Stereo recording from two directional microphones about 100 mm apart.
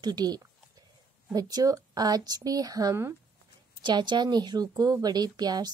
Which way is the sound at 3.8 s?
50° right (ahead or behind).